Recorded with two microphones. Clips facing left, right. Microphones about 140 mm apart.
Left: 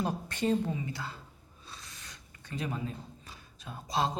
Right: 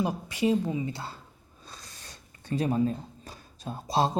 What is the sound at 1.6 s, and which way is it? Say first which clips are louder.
Speech: right 2 dB; 40° right (ahead or behind).